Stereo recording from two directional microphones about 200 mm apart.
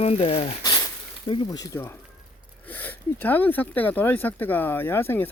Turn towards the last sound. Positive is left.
turn(degrees=10)  # may be behind; listen again after turning